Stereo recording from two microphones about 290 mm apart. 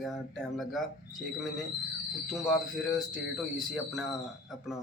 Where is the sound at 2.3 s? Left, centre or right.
Centre.